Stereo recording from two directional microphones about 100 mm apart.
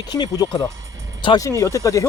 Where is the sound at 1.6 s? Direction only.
35° left (ahead or behind).